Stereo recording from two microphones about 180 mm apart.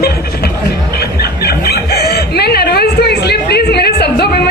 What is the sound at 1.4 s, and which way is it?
Chicken, 60° left (ahead or behind).